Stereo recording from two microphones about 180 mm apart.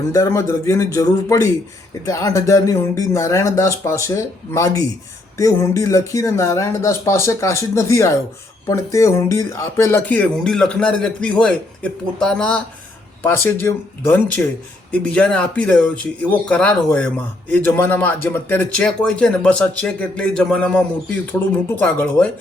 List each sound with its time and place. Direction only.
0.1 s speech: 15° left (ahead or behind)